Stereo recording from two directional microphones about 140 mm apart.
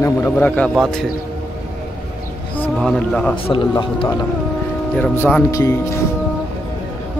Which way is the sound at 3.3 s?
40° left (ahead or behind).